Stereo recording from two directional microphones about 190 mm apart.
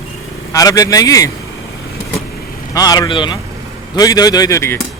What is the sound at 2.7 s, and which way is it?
Speech, 20° left (ahead or behind).